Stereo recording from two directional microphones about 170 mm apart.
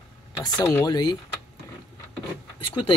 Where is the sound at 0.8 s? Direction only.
20° left (ahead or behind).